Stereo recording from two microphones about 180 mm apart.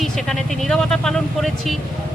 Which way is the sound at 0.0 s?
Centre (ahead or behind).